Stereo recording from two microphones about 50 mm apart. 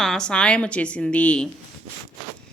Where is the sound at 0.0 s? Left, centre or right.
Centre.